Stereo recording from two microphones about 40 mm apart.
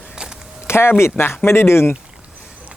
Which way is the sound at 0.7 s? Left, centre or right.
Left.